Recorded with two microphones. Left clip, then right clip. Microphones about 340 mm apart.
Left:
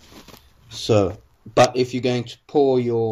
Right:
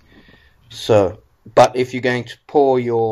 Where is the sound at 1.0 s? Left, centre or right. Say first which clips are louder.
Right 4 dB; right.